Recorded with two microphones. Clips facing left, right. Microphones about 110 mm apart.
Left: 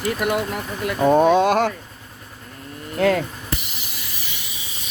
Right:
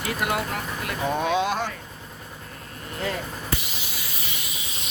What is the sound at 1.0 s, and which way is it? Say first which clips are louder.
Speech: left 9 dB; 50° left (ahead or behind).